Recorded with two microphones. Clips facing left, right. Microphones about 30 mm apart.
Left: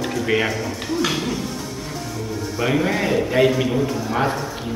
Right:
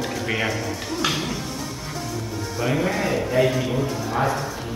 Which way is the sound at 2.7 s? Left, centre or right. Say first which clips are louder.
Left 3 dB; centre.